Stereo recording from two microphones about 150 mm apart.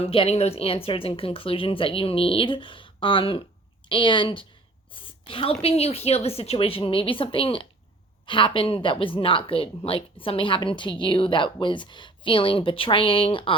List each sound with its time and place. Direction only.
0.0 s a woman's voice: 40° left (ahead or behind)
4.9 s a sound: 35° left (ahead or behind)
5.6 s a woman's voice: 40° left (ahead or behind)